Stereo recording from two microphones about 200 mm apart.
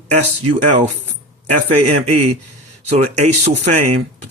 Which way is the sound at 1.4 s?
35° right (ahead or behind).